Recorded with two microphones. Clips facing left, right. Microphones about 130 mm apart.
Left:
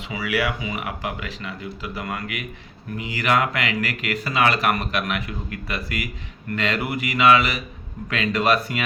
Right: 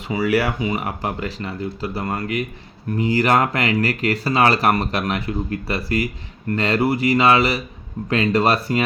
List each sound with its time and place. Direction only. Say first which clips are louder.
0.1 s speech: right 5 dB; 40° right (ahead or behind)